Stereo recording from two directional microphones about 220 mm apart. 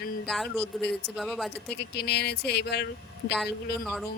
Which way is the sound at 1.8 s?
50° left (ahead or behind).